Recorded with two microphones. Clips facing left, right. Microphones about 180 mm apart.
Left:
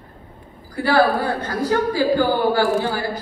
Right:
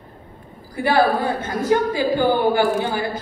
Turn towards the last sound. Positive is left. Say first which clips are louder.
# left 1 dB
turn(degrees=-20)  # may be behind; listen again after turning